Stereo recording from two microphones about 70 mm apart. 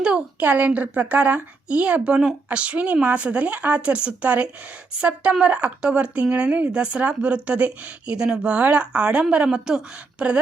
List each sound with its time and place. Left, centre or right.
0.0 s a woman's voice: centre